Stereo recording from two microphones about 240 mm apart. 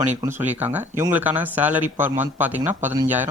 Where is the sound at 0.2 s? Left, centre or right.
Centre.